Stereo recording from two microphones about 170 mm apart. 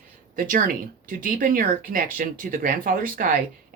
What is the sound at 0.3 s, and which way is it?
Speech, 55° right (ahead or behind).